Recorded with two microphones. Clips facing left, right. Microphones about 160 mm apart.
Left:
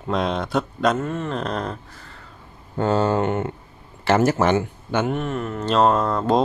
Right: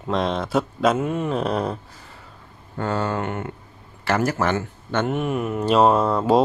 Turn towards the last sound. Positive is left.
turn(degrees=-5)  # may be behind; listen again after turning